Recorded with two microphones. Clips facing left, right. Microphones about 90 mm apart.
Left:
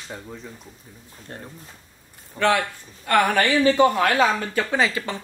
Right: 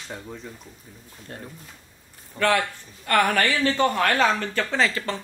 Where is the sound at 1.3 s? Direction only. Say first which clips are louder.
Even; 35° left (ahead or behind).